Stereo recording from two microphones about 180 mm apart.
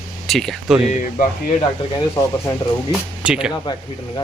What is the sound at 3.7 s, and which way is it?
Speech, 25° left (ahead or behind).